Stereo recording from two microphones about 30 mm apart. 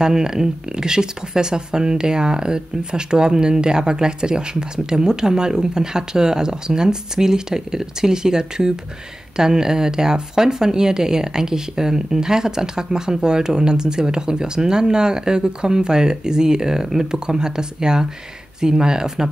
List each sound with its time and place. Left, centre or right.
0.0 s speech: right